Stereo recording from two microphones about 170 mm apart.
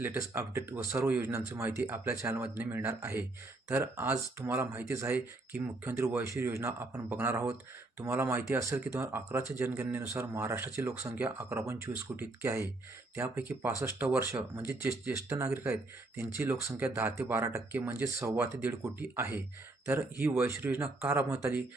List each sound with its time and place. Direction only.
0.0 s speech: 10° right (ahead or behind)